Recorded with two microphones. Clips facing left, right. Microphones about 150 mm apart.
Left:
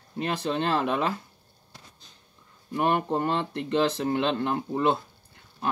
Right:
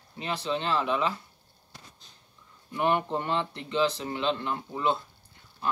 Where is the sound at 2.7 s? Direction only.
45° left (ahead or behind).